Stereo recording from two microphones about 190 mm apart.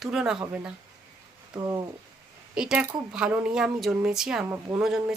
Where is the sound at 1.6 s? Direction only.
20° right (ahead or behind).